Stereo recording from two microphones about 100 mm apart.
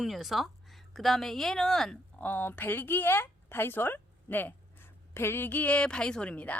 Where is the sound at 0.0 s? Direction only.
Centre (ahead or behind).